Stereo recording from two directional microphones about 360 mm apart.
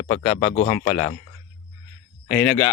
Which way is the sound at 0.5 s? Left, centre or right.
Centre.